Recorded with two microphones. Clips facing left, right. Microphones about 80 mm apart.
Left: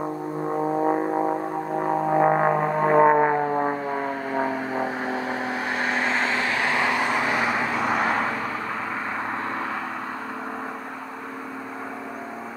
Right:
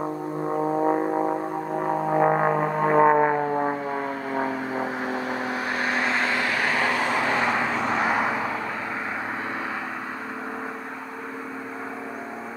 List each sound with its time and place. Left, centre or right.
0.0 s music: centre
5.8 s vehicle: left; by 8.1 s centre
8.1 s vehicle: centre